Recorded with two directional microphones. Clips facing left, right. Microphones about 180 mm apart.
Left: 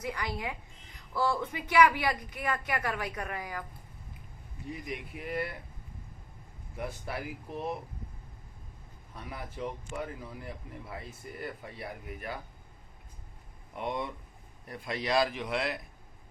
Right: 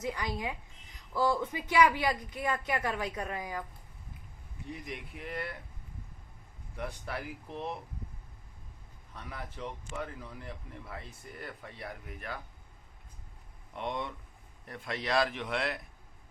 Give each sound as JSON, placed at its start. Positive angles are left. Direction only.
{"t": 0.0, "sound": "a woman's voice", "side_deg": -20}
{"t": 4.7, "sound": "a man's voice", "side_deg": 5}
{"t": 6.7, "sound": "a man's voice", "side_deg": 10}
{"t": 9.1, "sound": "a man's voice", "side_deg": 10}
{"t": 13.7, "sound": "a man's voice", "side_deg": 5}